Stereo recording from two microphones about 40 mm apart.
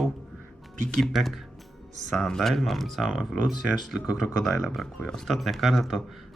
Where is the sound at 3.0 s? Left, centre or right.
Centre.